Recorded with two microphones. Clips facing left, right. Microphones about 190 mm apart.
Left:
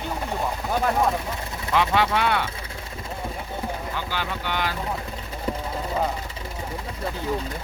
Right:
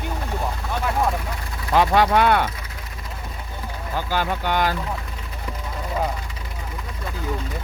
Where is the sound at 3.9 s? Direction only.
45° right (ahead or behind).